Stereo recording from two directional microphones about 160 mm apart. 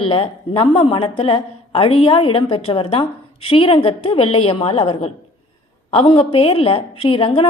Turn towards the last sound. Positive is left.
turn(degrees=35)  # may be behind; listen again after turning